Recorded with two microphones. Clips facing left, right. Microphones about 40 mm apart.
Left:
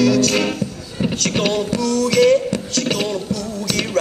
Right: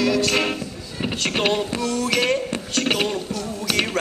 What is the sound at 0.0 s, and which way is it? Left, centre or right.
Music, centre.